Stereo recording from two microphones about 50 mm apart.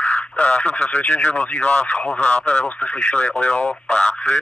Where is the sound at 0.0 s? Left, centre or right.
Left.